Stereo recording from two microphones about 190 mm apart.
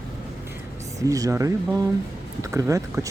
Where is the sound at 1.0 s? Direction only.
15° right (ahead or behind).